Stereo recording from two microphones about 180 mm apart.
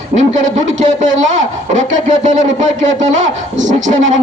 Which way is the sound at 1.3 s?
45° right (ahead or behind).